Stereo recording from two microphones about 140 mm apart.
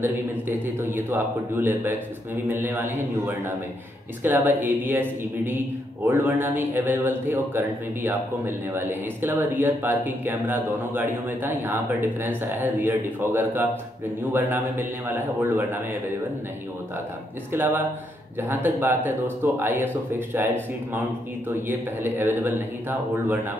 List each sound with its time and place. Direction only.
1.1 s a man's voice: 15° right (ahead or behind)
4.2 s a man's voice: 15° right (ahead or behind)
17.5 s a man's voice: 15° right (ahead or behind)